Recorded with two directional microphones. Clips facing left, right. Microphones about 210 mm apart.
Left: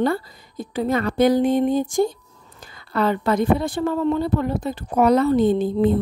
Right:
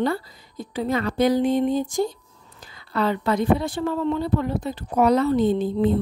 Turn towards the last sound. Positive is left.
turn(degrees=50)  # may be behind; listen again after turning